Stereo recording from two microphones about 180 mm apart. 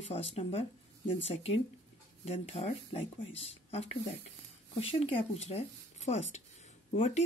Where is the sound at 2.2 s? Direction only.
35° left (ahead or behind).